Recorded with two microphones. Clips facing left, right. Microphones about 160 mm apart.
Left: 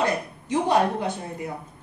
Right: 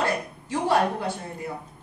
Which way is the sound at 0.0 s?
20° left (ahead or behind).